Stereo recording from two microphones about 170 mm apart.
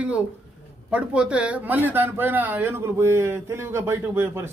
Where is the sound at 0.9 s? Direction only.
5° right (ahead or behind).